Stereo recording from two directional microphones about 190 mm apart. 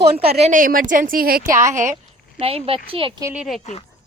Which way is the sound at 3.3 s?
Centre (ahead or behind).